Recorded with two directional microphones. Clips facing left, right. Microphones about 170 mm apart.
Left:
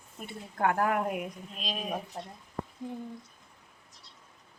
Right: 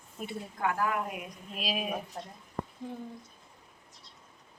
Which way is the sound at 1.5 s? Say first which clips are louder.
Right 3 dB; 5° right (ahead or behind).